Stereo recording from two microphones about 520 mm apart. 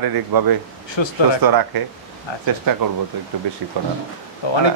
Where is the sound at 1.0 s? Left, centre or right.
Left.